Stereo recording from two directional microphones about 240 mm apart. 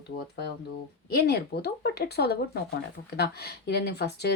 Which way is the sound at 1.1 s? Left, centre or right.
Left.